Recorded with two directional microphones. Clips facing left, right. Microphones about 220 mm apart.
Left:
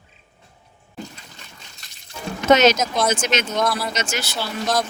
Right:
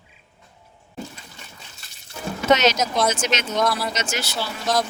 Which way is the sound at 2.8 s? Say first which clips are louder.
Even; centre (ahead or behind).